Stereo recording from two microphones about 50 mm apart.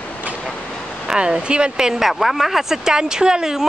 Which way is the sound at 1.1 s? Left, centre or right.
Centre.